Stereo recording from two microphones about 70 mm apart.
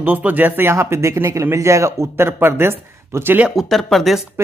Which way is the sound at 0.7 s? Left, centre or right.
Right.